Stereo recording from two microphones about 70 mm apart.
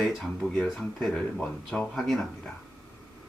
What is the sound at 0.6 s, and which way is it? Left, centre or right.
Speech, centre.